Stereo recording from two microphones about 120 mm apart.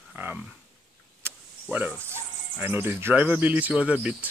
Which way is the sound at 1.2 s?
15° right (ahead or behind).